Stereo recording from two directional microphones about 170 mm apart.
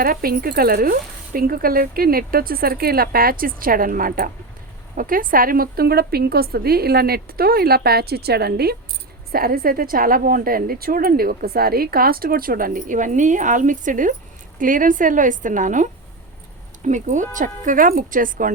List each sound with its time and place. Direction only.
0.0 s a woman's voice: 60° right (ahead or behind)